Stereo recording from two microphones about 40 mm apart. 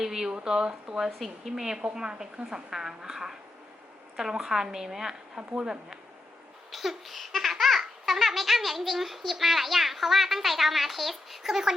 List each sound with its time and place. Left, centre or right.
0.0 s a woman's voice: centre
1.2 s a woman's voice: centre
6.7 s babbling: centre